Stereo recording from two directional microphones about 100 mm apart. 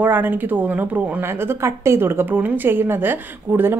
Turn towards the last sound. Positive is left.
turn(degrees=-20)  # may be behind; listen again after turning